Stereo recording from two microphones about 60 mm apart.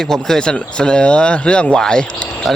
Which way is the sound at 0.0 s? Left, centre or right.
Centre.